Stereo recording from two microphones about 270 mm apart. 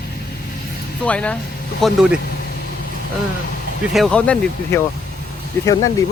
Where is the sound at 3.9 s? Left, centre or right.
Centre.